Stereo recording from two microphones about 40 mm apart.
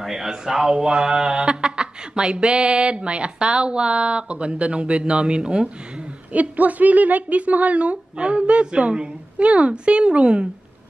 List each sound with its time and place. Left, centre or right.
0.0 s speech: centre
6.3 s speech: right